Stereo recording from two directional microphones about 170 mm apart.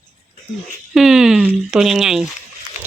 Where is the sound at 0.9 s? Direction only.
Centre (ahead or behind).